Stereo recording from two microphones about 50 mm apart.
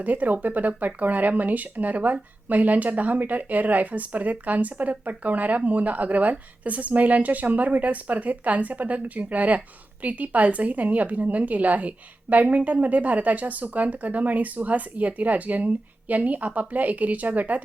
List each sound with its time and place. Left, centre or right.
0.0 s a woman's voice: right